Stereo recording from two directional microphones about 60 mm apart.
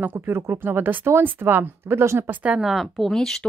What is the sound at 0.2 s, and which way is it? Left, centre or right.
Speech, right.